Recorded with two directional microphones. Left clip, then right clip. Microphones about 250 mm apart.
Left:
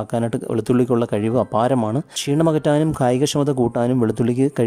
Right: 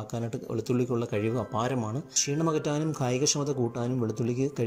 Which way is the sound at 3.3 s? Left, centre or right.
Left.